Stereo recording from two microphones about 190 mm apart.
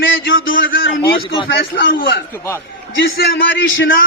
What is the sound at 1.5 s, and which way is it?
Speech, 55° left (ahead or behind).